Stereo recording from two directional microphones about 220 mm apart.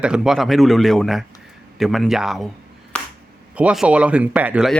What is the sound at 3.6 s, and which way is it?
Speech, 5° right (ahead or behind).